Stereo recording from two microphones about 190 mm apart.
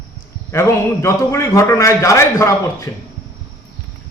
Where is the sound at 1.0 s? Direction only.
15° left (ahead or behind).